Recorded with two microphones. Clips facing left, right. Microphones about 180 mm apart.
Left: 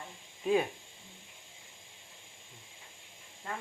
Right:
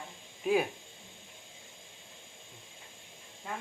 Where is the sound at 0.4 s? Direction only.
5° right (ahead or behind).